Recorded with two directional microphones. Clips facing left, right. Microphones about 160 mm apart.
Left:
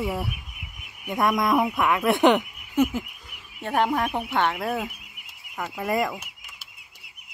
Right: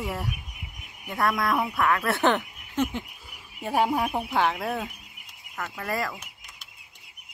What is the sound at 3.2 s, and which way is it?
Speech, 10° right (ahead or behind).